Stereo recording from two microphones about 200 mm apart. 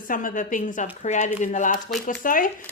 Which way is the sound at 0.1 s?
40° left (ahead or behind).